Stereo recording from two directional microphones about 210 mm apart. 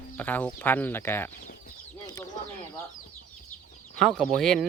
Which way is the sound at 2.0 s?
15° left (ahead or behind).